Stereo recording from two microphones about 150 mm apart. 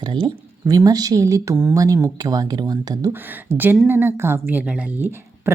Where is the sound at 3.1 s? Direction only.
10° right (ahead or behind).